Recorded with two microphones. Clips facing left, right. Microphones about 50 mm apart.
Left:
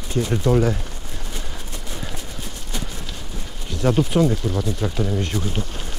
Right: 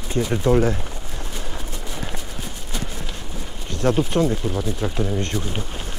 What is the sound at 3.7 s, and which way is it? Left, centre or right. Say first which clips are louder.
Speech: left 1 dB; centre.